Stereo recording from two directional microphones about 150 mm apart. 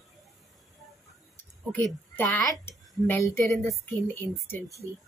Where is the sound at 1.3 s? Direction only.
15° left (ahead or behind).